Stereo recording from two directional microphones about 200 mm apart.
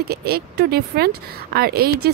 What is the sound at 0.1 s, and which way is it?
Speech, 50° right (ahead or behind).